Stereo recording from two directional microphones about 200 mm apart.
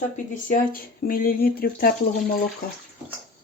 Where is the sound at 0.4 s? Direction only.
45° left (ahead or behind).